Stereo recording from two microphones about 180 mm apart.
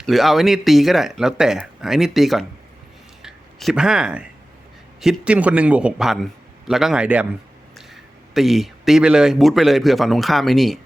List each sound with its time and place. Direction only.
0.0 s a man's voice: centre (ahead or behind)
8.3 s speech: centre (ahead or behind)